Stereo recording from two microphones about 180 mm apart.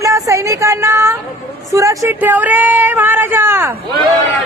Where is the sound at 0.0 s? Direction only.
15° right (ahead or behind).